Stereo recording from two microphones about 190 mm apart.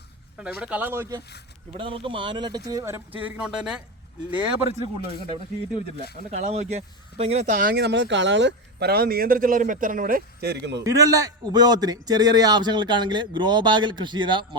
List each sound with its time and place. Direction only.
0.6 s speech: 10° right (ahead or behind)
1.8 s speech: 25° right (ahead or behind); by 3.8 s 5° right (ahead or behind)
6.3 s speech: 35° right (ahead or behind); by 10.8 s 65° right (ahead or behind)
10.8 s a man's voice: 20° right (ahead or behind)